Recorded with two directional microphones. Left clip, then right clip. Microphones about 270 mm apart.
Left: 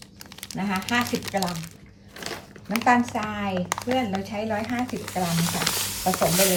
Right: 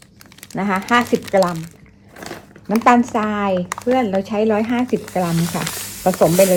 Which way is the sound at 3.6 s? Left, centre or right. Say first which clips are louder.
Right 7 dB; centre.